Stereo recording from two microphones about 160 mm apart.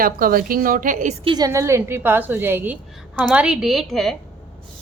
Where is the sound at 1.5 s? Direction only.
15° right (ahead or behind); by 4.1 s centre (ahead or behind).